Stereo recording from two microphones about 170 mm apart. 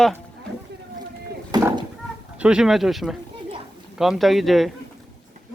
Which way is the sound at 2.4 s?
5° right (ahead or behind).